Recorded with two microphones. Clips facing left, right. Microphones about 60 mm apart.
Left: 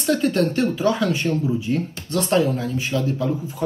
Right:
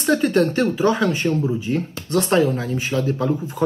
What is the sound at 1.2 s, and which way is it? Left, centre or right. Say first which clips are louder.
Speech: right 1 dB; right.